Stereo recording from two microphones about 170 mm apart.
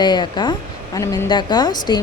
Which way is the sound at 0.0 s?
25° left (ahead or behind).